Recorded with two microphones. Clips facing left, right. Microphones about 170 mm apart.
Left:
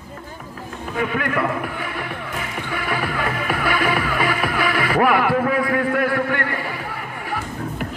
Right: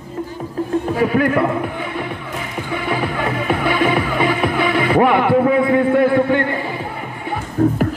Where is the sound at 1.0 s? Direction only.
35° right (ahead or behind).